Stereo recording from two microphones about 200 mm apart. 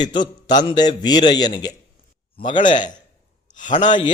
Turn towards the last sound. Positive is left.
turn(degrees=40)  # may be behind; listen again after turning